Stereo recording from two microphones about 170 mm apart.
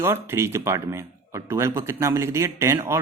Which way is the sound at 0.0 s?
15° right (ahead or behind).